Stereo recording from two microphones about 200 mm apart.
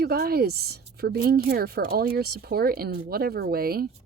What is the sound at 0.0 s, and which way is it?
A woman's voice, 50° right (ahead or behind).